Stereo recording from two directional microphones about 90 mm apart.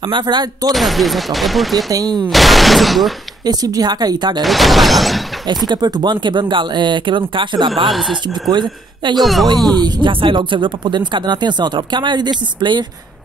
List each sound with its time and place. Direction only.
0.0 s speech: 60° right (ahead or behind)
0.7 s speech: centre (ahead or behind)
1.9 s speech: 45° right (ahead or behind)
2.2 s speech: centre (ahead or behind)
3.4 s speech: 45° right (ahead or behind)
4.4 s speech: centre (ahead or behind)
5.7 s speech: 55° right (ahead or behind)
7.9 s speech: centre (ahead or behind)
8.3 s speech: 55° right (ahead or behind)
9.1 s speech: centre (ahead or behind)
9.7 s speech: 50° right (ahead or behind)